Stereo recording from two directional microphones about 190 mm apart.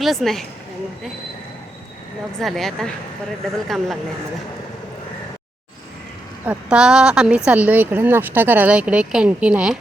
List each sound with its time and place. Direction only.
0.0 s speech: centre (ahead or behind)
2.4 s speech: centre (ahead or behind)
6.4 s speech: 5° right (ahead or behind)